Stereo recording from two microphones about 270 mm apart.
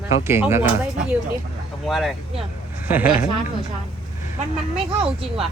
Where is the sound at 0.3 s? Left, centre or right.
Centre.